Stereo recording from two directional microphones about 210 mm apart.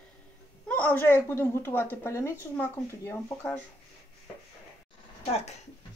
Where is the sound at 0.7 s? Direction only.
10° left (ahead or behind).